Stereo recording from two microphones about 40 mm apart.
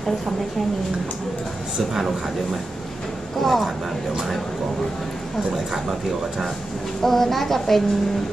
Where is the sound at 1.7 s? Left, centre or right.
Centre.